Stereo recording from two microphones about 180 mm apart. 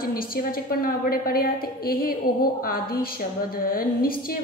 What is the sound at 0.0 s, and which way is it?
A woman's voice, 55° left (ahead or behind).